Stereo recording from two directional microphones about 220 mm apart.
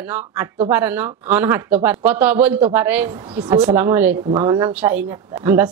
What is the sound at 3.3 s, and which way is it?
Speech, 20° right (ahead or behind).